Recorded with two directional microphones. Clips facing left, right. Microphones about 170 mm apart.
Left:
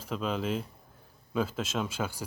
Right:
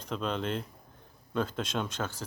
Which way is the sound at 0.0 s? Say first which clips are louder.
Left 1 dB; 5° left (ahead or behind).